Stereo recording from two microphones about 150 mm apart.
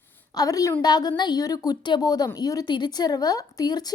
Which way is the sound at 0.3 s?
25° left (ahead or behind).